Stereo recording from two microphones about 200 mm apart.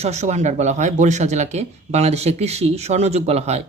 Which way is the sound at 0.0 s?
35° right (ahead or behind).